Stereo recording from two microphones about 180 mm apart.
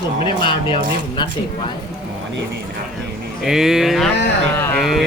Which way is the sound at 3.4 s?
Centre (ahead or behind).